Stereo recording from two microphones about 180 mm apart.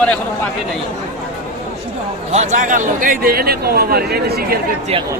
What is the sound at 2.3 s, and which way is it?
A man's voice, 40° right (ahead or behind).